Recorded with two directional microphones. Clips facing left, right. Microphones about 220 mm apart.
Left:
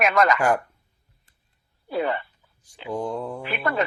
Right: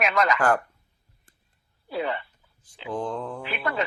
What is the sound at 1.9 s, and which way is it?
Speech, 50° left (ahead or behind).